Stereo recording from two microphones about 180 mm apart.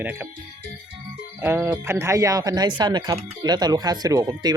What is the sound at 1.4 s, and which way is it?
Speech, 10° right (ahead or behind).